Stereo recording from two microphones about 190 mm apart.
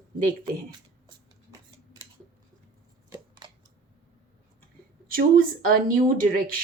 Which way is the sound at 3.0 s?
20° right (ahead or behind).